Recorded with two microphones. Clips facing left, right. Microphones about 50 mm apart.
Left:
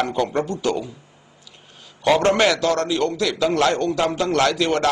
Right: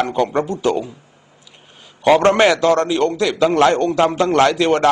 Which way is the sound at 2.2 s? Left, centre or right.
Right.